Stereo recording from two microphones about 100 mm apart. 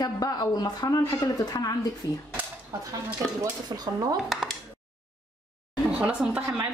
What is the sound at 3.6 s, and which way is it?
Speech, 40° right (ahead or behind).